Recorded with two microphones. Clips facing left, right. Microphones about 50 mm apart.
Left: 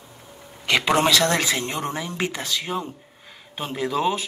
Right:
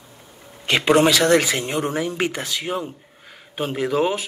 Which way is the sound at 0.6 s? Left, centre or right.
Right.